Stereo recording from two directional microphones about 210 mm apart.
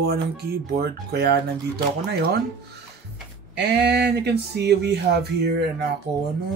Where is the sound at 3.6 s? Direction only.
50° right (ahead or behind).